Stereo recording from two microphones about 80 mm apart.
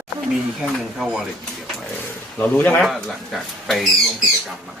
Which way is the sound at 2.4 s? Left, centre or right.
Left.